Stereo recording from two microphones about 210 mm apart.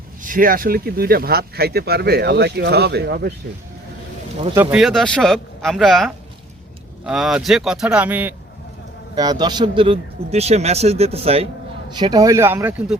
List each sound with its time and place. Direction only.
0.2 s speech: 40° right (ahead or behind)
4.5 s speech: 5° right (ahead or behind)
9.1 s speech: 20° right (ahead or behind)